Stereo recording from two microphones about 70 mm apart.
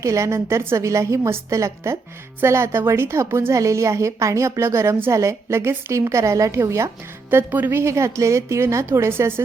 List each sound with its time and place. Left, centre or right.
0.0 s a woman's voice: right
0.8 s a woman's voice: right
7.3 s a woman's voice: right